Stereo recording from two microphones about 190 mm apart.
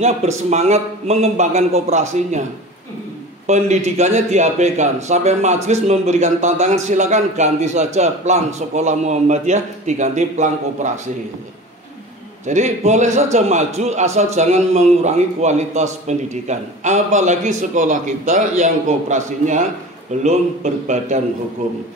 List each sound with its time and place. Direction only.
0.5 s speech: 35° right (ahead or behind)
3.4 s speech: 35° right (ahead or behind)
12.4 s speech: 40° right (ahead or behind)